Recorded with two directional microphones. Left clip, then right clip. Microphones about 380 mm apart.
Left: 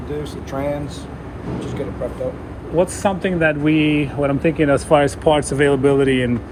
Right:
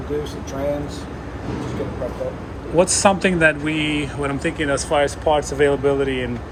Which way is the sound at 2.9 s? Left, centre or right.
Centre.